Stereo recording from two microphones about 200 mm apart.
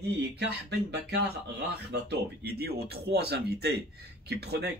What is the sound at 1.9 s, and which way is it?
Speech, 55° right (ahead or behind).